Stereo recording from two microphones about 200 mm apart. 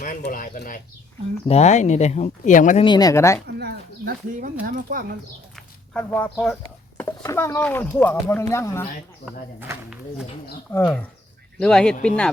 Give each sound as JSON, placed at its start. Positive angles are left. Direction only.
{"t": 0.2, "sound": "speech", "side_deg": 45}
{"t": 1.5, "sound": "speech", "side_deg": 35}
{"t": 2.8, "sound": "speech", "side_deg": 20}
{"t": 3.4, "sound": "bird", "side_deg": -55}
{"t": 4.6, "sound": "speech", "side_deg": -45}
{"t": 5.9, "sound": "speech", "side_deg": 10}
{"t": 9.2, "sound": "speech", "side_deg": -10}
{"t": 10.7, "sound": "speech", "side_deg": 10}